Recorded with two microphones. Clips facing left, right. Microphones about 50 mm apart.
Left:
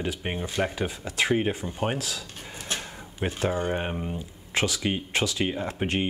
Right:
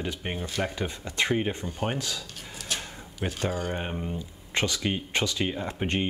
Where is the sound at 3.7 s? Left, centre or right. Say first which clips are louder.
Left 3 dB; centre.